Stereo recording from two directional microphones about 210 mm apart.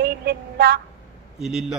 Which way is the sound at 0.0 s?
50° right (ahead or behind).